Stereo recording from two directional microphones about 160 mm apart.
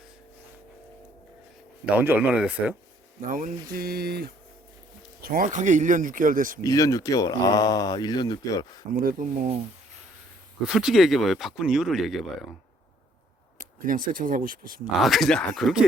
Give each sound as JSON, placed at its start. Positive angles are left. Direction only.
{"t": 1.8, "sound": "speech", "side_deg": -10}
{"t": 3.2, "sound": "speech", "side_deg": -60}
{"t": 5.2, "sound": "speech", "side_deg": -65}
{"t": 6.6, "sound": "speech", "side_deg": 20}
{"t": 9.0, "sound": "speech", "side_deg": -55}
{"t": 10.6, "sound": "speech", "side_deg": -5}
{"t": 13.6, "sound": "speech", "side_deg": -60}
{"t": 15.0, "sound": "speech", "side_deg": 0}